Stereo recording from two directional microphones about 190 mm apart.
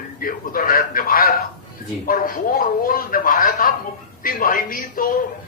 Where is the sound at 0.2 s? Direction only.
50° left (ahead or behind).